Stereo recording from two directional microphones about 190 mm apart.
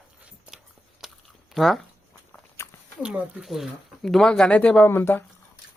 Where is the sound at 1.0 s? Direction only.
Centre (ahead or behind).